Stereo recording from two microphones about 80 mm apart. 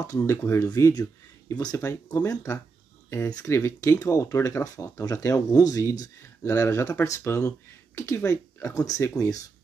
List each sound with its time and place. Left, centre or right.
0.0 s speech: left
0.7 s speech: left
1.5 s speech: left
2.2 s speech: left
3.4 s speech: left
4.0 s speech: left